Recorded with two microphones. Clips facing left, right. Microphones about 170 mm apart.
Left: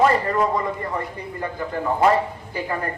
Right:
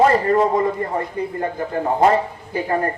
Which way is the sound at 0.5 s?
45° right (ahead or behind).